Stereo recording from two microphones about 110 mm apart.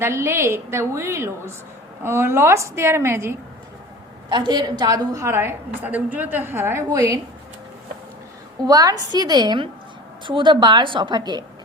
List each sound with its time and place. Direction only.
0.0 s a woman's voice: 25° right (ahead or behind)
4.3 s a woman's voice: 40° right (ahead or behind)
8.6 s a woman's voice: 35° right (ahead or behind)